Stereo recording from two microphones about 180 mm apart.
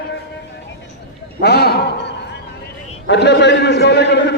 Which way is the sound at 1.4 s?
60° left (ahead or behind).